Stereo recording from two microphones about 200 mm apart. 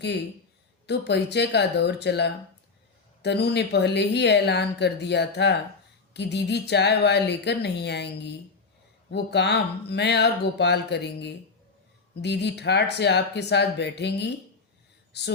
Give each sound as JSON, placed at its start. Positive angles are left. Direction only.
{"t": 0.9, "sound": "speech", "side_deg": 55}